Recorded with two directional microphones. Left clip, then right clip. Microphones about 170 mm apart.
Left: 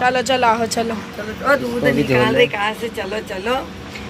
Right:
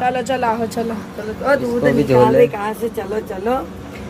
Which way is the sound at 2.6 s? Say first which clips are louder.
Left 1 dB; 40° right (ahead or behind).